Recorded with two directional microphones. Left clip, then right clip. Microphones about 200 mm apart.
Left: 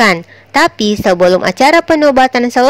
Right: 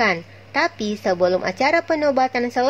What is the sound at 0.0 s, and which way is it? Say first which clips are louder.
A woman's voice: left 9 dB; 35° left (ahead or behind).